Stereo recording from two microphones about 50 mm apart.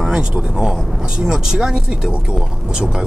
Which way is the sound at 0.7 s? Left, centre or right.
Centre.